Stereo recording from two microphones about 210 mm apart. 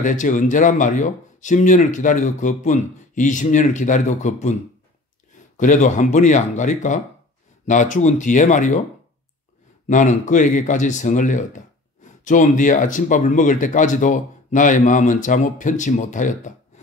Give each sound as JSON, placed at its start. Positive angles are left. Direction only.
{"t": 0.0, "sound": "speech", "side_deg": 40}
{"t": 5.6, "sound": "speech", "side_deg": 35}
{"t": 9.8, "sound": "speech", "side_deg": 35}